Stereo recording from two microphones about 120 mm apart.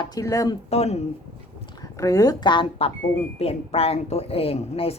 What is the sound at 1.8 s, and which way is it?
Speech, 30° left (ahead or behind).